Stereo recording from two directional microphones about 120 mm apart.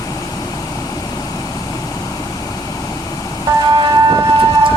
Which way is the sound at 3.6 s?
45° right (ahead or behind).